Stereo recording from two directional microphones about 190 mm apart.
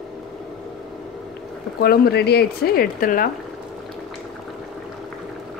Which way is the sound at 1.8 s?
55° left (ahead or behind).